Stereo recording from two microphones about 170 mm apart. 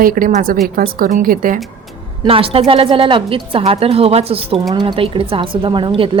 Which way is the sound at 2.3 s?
35° right (ahead or behind).